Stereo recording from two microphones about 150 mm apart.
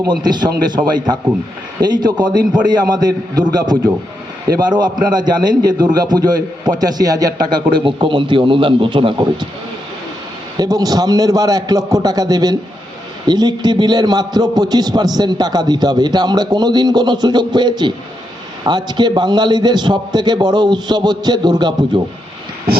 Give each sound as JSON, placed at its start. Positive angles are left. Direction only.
{"t": 0.0, "sound": "a man's voice", "side_deg": -30}
{"t": 10.6, "sound": "a man's voice", "side_deg": -25}